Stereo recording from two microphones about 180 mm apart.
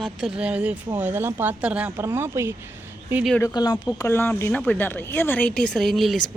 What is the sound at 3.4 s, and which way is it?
Speech, 20° left (ahead or behind).